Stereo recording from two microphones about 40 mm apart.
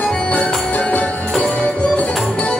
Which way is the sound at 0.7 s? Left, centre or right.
Left.